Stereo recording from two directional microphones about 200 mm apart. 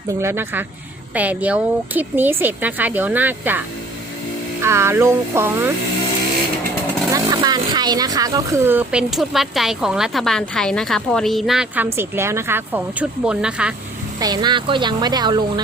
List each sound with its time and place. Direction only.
0.2 s speech: 10° right (ahead or behind)
4.6 s speech: 15° right (ahead or behind)
7.1 s speech: 20° right (ahead or behind)
14.2 s speech: 20° right (ahead or behind)